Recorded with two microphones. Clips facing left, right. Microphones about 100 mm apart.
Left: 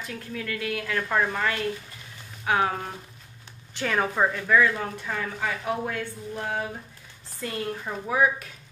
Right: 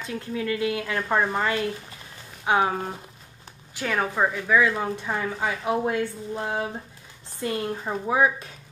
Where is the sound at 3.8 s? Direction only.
Centre (ahead or behind).